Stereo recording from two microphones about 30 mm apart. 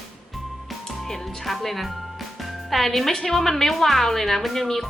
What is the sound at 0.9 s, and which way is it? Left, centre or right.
Speech, centre.